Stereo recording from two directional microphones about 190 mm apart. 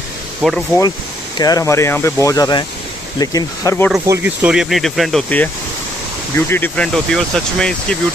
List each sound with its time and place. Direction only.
0.4 s speech: centre (ahead or behind)
1.4 s speech: 20° left (ahead or behind)
4.1 s speech: 5° right (ahead or behind)